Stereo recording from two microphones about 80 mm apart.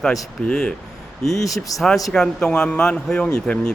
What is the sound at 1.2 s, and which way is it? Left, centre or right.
Speech, left.